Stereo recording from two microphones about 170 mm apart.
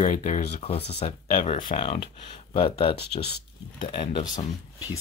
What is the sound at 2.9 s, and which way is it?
Speech, 75° left (ahead or behind).